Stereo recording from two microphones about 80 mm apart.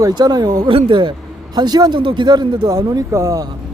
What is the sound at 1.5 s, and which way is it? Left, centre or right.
Speech, right.